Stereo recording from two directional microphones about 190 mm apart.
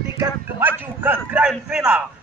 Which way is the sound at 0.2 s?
10° right (ahead or behind).